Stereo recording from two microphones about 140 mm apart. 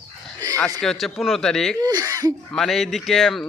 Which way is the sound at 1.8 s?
25° right (ahead or behind).